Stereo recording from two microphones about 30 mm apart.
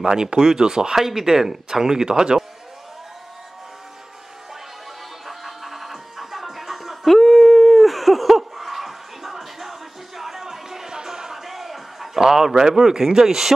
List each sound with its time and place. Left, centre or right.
0.0 s speech: centre
0.9 s speech: centre
5.2 s music: centre
7.1 s a sound: centre
10.9 s music: right
11.3 s a sound: centre